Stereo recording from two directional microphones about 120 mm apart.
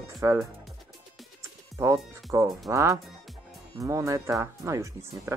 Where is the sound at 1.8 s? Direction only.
25° right (ahead or behind).